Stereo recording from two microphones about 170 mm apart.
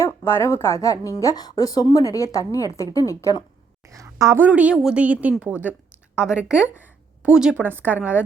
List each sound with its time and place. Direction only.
0.0 s a woman's voice: 15° left (ahead or behind)
3.8 s a woman's voice: 20° right (ahead or behind)